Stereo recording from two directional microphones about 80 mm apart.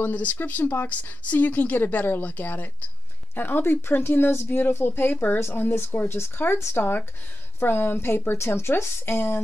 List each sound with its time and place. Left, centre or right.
0.0 s speech: centre